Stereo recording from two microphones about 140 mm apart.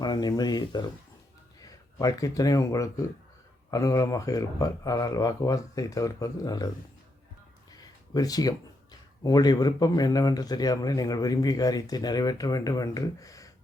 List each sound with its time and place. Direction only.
0.0 s speech: 30° left (ahead or behind)
7.7 s speech: 25° left (ahead or behind)